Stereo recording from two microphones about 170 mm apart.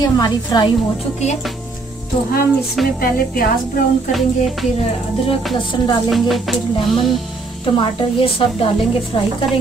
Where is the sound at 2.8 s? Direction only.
Centre (ahead or behind).